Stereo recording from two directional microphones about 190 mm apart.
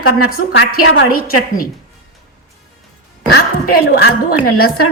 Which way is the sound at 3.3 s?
50° left (ahead or behind).